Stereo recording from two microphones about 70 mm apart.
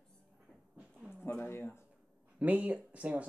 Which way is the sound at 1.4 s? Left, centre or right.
Left.